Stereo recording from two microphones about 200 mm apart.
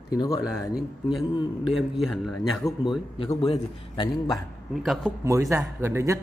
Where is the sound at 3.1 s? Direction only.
20° left (ahead or behind).